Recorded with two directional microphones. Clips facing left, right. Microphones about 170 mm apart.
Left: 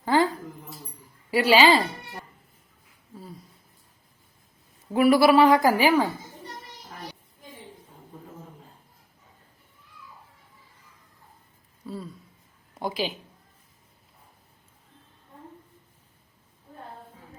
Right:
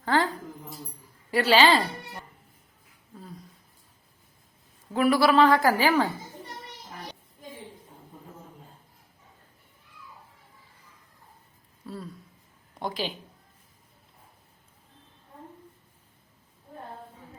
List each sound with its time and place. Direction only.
0.0 s keys jangling: 10° left (ahead or behind)
1.3 s a woman's voice: 10° left (ahead or behind)
4.9 s a woman's voice: 10° left (ahead or behind)
11.9 s a sound: centre (ahead or behind)
12.8 s speech: 10° left (ahead or behind)